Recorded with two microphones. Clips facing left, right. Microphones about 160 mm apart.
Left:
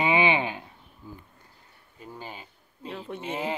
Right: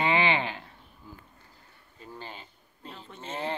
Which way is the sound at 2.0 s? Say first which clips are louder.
Left 2 dB; 10° left (ahead or behind).